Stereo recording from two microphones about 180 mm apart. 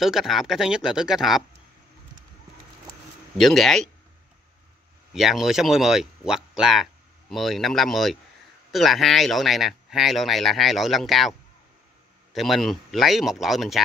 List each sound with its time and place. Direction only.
0.0 s speech: centre (ahead or behind)
3.3 s speech: centre (ahead or behind)
5.1 s speech: centre (ahead or behind)